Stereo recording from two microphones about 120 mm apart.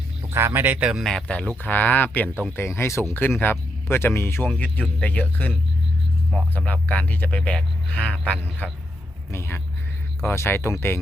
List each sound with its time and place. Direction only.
0.3 s speech: 20° right (ahead or behind)
1.0 s speech: 5° left (ahead or behind)